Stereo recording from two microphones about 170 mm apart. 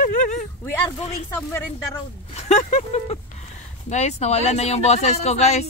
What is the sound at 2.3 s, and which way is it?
Speech, 40° left (ahead or behind).